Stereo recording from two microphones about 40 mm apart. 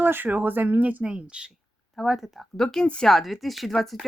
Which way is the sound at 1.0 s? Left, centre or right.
Right.